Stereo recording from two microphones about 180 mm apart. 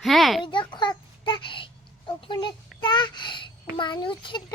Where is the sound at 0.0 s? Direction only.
Centre (ahead or behind).